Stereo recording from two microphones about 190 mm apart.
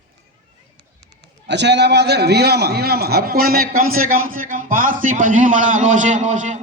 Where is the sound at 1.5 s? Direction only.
65° right (ahead or behind).